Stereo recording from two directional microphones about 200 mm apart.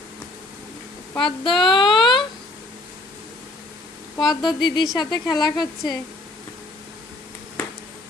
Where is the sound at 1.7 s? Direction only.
25° left (ahead or behind).